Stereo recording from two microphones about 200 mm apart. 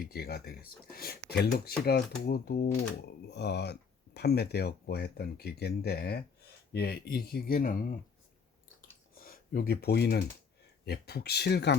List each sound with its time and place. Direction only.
0.0 s speech: 50° left (ahead or behind)
9.1 s speech: 45° left (ahead or behind)